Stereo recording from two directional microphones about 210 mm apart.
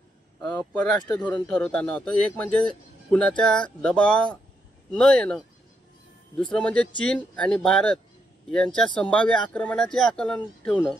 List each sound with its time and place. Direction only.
0.6 s speech: 5° left (ahead or behind)